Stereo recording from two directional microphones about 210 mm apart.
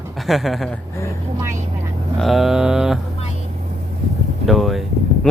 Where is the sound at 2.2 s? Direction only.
Centre (ahead or behind).